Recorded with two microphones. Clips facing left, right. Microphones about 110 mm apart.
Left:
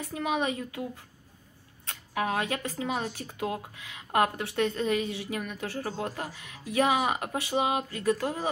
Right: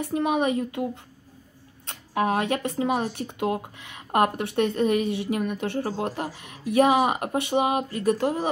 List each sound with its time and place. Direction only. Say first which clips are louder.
0.1 s a woman's voice: right 5 dB; 25° right (ahead or behind)
0.6 s speech: right 8 dB; 35° right (ahead or behind)
1.9 s a woman's voice: right 6 dB; 30° right (ahead or behind)
6.0 s a woman's voice: right 5 dB; 25° right (ahead or behind)
6.8 s speech: right 6 dB; 40° right (ahead or behind)
7.3 s a woman's voice: right 5 dB; 25° right (ahead or behind)